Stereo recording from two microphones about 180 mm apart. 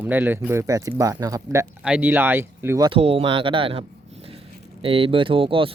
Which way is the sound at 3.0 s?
35° right (ahead or behind).